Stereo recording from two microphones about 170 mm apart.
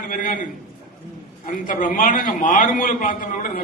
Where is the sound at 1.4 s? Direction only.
50° left (ahead or behind).